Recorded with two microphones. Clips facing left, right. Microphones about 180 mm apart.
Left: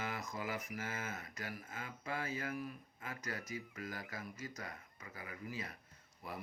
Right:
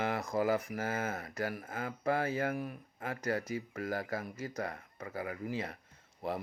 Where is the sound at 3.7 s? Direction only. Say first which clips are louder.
Right 10 dB; 60° right (ahead or behind).